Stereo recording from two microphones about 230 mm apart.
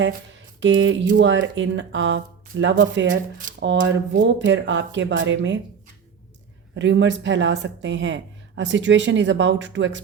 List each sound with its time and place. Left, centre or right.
0.6 s speech: right
6.7 s speech: right